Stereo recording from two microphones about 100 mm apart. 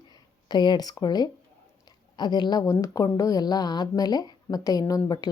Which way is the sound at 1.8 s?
45° left (ahead or behind).